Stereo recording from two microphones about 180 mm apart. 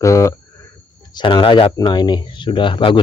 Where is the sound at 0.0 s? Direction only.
15° left (ahead or behind).